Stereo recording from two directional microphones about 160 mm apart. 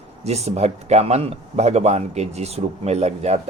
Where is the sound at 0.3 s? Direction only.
40° right (ahead or behind).